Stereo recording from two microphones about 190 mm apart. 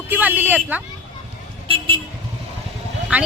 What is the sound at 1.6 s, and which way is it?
Speech, 25° right (ahead or behind).